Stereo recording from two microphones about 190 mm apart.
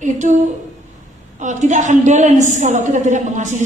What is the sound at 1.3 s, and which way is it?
A woman's voice, 40° right (ahead or behind).